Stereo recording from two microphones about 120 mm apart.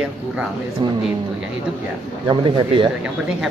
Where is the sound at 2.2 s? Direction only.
45° right (ahead or behind).